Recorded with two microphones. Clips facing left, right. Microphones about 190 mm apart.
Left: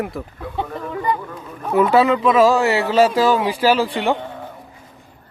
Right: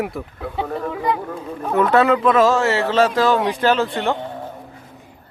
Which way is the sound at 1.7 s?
10° left (ahead or behind).